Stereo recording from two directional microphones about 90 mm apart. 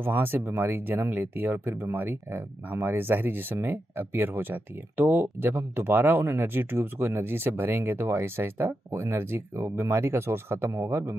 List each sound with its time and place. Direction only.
0.0 s speech: 25° right (ahead or behind)